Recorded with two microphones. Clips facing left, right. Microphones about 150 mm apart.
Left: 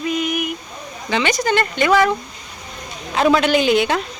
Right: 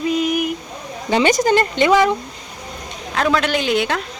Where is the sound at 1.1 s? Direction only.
45° right (ahead or behind).